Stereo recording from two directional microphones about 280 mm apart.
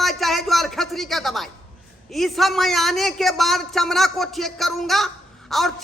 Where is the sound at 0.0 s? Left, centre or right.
Centre.